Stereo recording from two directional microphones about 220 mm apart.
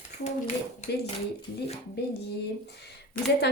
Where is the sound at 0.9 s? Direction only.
50° left (ahead or behind).